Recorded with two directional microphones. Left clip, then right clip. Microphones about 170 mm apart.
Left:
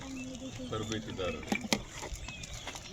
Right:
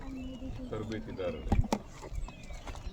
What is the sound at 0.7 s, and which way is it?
Speech, 5° left (ahead or behind).